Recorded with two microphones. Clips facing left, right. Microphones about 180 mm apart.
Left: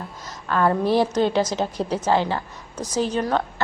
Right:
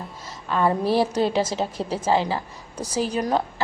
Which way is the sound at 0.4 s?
Centre (ahead or behind).